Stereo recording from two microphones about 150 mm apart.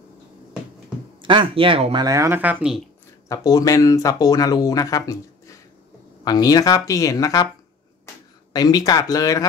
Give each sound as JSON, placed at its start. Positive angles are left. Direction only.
{"t": 1.2, "sound": "speech", "side_deg": -35}
{"t": 2.0, "sound": "speech", "side_deg": -20}
{"t": 3.3, "sound": "speech", "side_deg": 25}
{"t": 6.2, "sound": "speech", "side_deg": 25}
{"t": 8.5, "sound": "speech", "side_deg": 25}